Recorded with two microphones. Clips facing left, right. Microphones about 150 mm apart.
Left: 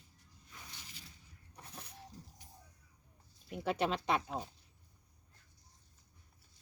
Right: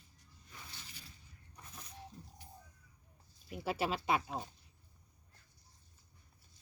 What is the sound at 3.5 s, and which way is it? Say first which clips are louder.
Speech: left 2 dB; 5° right (ahead or behind).